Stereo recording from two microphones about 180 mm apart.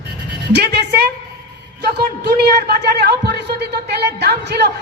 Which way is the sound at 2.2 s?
65° right (ahead or behind).